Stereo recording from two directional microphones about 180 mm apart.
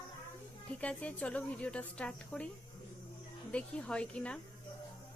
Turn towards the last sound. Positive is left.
turn(degrees=5)  # may be behind; listen again after turning